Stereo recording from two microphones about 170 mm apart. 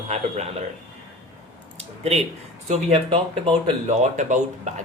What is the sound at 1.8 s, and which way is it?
Speech, 40° right (ahead or behind).